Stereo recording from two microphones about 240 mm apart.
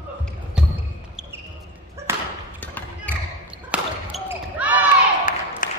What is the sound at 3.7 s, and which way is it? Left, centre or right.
Basketball bounce, centre.